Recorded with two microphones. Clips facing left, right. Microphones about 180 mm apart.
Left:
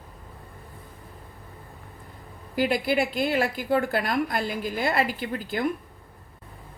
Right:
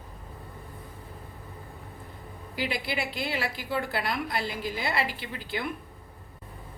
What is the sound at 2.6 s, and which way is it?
A woman's voice, 45° left (ahead or behind).